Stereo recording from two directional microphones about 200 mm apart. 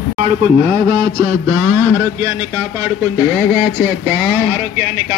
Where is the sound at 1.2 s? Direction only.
15° right (ahead or behind).